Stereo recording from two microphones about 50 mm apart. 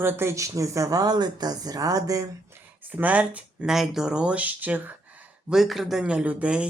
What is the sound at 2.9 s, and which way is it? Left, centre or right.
Speech, right.